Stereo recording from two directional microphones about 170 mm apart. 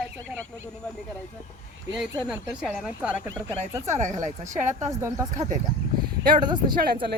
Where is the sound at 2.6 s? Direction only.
5° right (ahead or behind).